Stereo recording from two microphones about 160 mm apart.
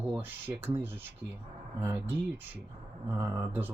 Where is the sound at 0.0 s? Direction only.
10° right (ahead or behind).